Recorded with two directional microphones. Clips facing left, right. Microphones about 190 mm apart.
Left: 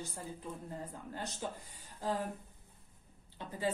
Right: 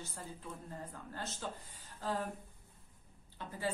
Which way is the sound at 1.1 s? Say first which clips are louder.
Left 2 dB; 15° left (ahead or behind).